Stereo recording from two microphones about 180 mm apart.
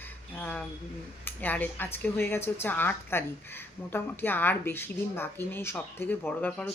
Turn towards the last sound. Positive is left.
turn(degrees=5)  # may be behind; listen again after turning